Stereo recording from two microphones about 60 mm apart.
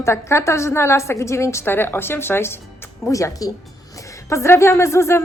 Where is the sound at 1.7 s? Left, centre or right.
Left.